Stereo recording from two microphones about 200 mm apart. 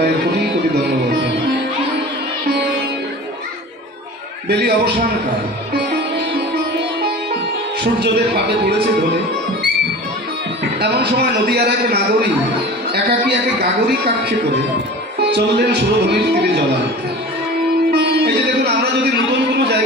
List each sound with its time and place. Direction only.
4.5 s a woman's voice: 55° right (ahead or behind)
7.8 s a man's voice: 55° right (ahead or behind)
10.8 s a man's voice: 55° right (ahead or behind)
15.2 s a man's voice: 55° right (ahead or behind)
17.9 s music: 55° right (ahead or behind)